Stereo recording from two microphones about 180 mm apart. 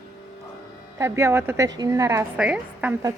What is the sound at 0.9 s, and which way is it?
A woman's voice, 15° right (ahead or behind).